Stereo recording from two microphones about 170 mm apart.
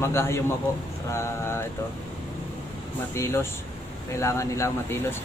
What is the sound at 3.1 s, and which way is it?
Speech, 15° left (ahead or behind).